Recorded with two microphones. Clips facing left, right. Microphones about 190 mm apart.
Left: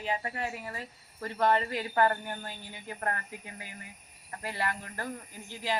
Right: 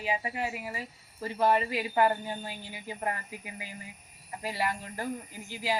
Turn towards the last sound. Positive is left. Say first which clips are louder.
# right 2 dB
turn(degrees=-15)  # may be behind; listen again after turning